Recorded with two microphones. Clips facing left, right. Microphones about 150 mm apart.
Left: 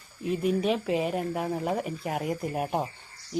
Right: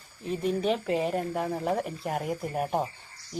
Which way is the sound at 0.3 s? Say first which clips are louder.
Left 1 dB; 5° left (ahead or behind).